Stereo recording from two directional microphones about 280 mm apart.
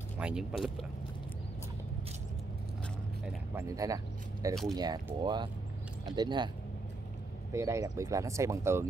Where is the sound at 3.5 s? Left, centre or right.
Centre.